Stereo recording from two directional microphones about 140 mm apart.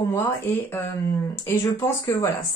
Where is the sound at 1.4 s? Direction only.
20° left (ahead or behind).